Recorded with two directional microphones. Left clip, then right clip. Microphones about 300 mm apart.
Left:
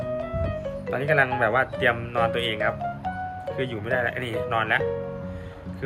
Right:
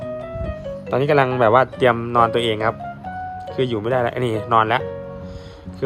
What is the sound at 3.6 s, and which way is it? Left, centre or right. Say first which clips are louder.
Speech: right 7 dB; right.